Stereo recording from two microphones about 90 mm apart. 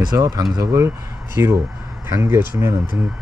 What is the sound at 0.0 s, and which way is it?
Speech, 45° right (ahead or behind).